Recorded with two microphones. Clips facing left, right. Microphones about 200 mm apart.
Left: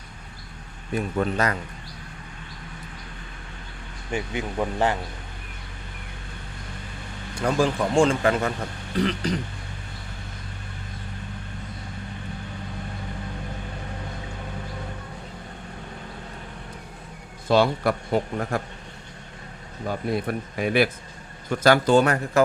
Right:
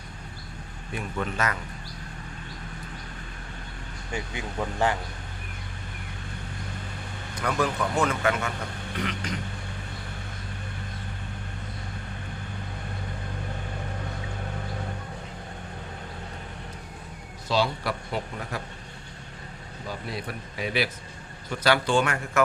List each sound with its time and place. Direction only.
0.9 s speech: 40° left (ahead or behind)
4.1 s speech: 20° left (ahead or behind)
7.3 s speech: 30° left (ahead or behind)
17.5 s speech: 50° left (ahead or behind)
19.9 s speech: 50° left (ahead or behind)